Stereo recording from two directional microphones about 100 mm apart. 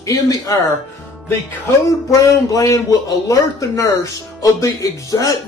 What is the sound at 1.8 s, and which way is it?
Speech, 35° left (ahead or behind).